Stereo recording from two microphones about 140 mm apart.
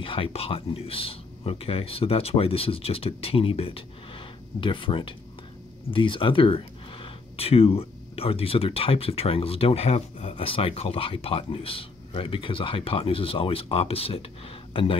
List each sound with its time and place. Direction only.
0.0 s speech: 40° left (ahead or behind)